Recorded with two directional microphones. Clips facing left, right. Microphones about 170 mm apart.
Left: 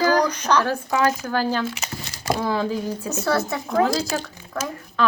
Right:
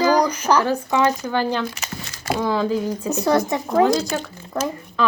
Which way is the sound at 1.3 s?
5° left (ahead or behind).